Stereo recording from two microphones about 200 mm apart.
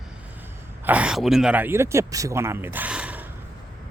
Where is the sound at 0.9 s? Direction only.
5° right (ahead or behind).